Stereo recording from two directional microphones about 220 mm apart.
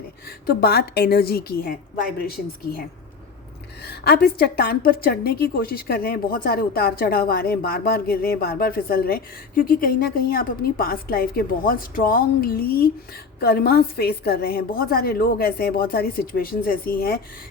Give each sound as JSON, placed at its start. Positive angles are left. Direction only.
{"t": 0.3, "sound": "a woman's voice", "side_deg": 45}
{"t": 3.8, "sound": "a woman's voice", "side_deg": 45}